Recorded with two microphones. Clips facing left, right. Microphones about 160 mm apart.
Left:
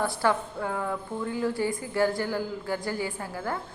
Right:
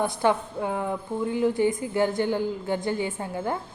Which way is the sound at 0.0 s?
20° right (ahead or behind).